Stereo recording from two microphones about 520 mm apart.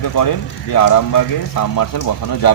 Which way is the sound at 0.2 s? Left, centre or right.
Left.